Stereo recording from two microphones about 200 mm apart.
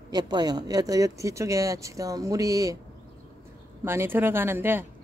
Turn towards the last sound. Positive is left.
turn(degrees=-10)  # may be behind; listen again after turning